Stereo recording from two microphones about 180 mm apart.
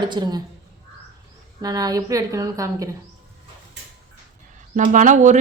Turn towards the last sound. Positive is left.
turn(degrees=-45)  # may be behind; listen again after turning